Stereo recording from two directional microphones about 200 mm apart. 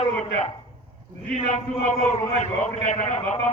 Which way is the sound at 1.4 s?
35° left (ahead or behind).